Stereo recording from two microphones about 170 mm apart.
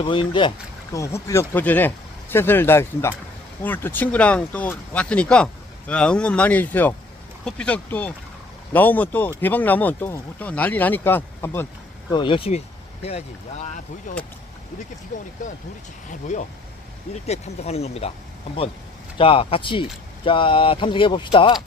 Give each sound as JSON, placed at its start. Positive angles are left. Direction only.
{"t": 0.0, "sound": "speech", "side_deg": 30}
{"t": 0.9, "sound": "speech", "side_deg": 15}
{"t": 12.1, "sound": "speech", "side_deg": 30}
{"t": 16.0, "sound": "speech", "side_deg": 45}
{"t": 19.1, "sound": "speech", "side_deg": 30}